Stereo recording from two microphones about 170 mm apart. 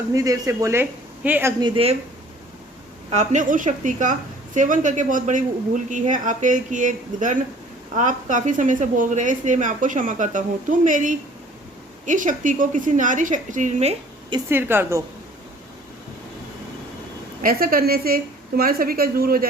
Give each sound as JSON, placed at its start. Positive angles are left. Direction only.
{"t": 0.1, "sound": "speech", "side_deg": -20}
{"t": 1.6, "sound": "speech", "side_deg": -35}
{"t": 3.1, "sound": "speech", "side_deg": -45}
{"t": 14.5, "sound": "speech", "side_deg": -15}
{"t": 17.4, "sound": "a woman's voice", "side_deg": -60}